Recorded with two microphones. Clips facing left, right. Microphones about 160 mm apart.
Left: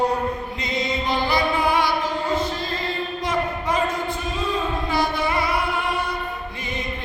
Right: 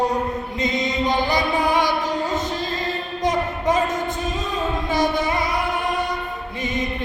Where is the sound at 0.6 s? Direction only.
20° right (ahead or behind).